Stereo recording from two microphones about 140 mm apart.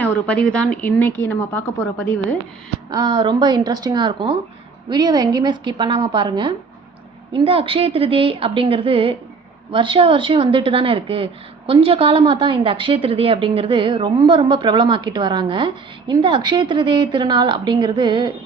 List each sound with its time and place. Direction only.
0.0 s a woman's voice: 10° left (ahead or behind)
2.9 s a woman's voice: 30° right (ahead or behind)